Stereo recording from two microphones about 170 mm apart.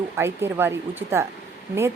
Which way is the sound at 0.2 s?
15° right (ahead or behind).